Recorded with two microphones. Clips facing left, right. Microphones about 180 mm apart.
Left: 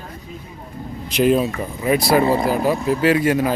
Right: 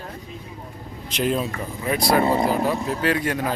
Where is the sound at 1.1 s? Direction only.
10° left (ahead or behind).